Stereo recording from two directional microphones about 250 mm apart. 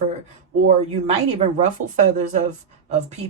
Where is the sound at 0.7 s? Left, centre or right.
Right.